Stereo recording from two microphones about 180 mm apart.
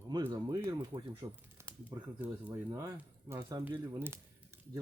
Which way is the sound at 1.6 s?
15° right (ahead or behind).